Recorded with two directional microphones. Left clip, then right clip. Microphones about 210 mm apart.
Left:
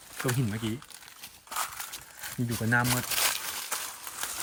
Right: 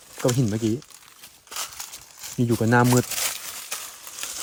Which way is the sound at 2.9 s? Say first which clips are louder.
Right 5 dB; centre (ahead or behind).